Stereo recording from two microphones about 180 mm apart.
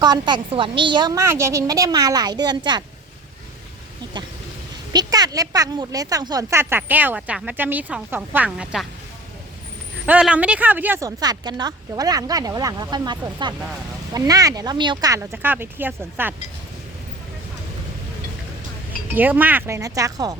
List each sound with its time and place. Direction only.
0.0 s speech: 25° right (ahead or behind)
4.9 s speech: 20° right (ahead or behind); by 8.9 s centre (ahead or behind)
10.1 s speech: 5° right (ahead or behind)
19.1 s speech: 10° right (ahead or behind)